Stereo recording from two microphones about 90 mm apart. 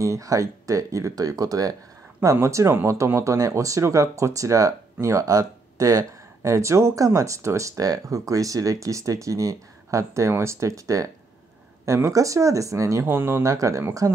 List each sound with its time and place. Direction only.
0.0 s speech: 35° right (ahead or behind)
2.3 s speech: 30° right (ahead or behind)
13.0 s speech: 25° right (ahead or behind)
13.5 s speech: 35° right (ahead or behind)